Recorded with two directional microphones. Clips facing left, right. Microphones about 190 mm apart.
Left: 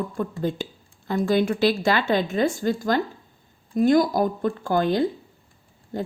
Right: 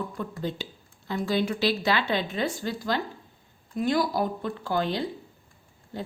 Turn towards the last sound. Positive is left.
turn(degrees=45)  # may be behind; listen again after turning